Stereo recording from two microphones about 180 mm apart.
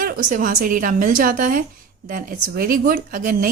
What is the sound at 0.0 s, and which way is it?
Speech, 50° right (ahead or behind).